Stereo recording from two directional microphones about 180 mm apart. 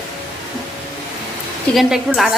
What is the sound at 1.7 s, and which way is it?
Speech, 5° left (ahead or behind).